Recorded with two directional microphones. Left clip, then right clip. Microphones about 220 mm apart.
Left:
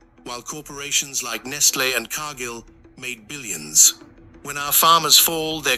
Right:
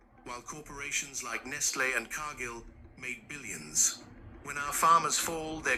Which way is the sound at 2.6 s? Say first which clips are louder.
Left 8 dB; 80° left.